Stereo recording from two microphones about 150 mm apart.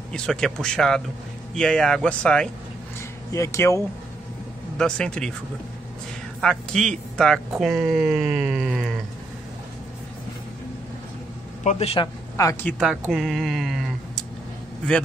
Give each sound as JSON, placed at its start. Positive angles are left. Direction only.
{"t": 0.1, "sound": "speech", "side_deg": 5}
{"t": 3.3, "sound": "speech", "side_deg": 20}
{"t": 4.7, "sound": "speech", "side_deg": 5}
{"t": 6.4, "sound": "speech", "side_deg": 5}
{"t": 11.6, "sound": "a man's voice", "side_deg": 45}
{"t": 12.0, "sound": "speech", "side_deg": 20}
{"t": 12.7, "sound": "speech", "side_deg": -5}